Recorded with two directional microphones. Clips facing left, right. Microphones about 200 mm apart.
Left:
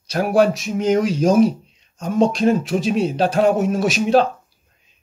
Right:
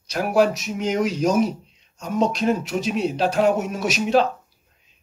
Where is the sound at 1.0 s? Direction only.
30° left (ahead or behind).